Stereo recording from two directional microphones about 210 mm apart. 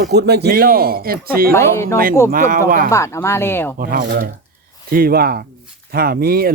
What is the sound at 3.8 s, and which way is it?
A man's voice, 45° right (ahead or behind).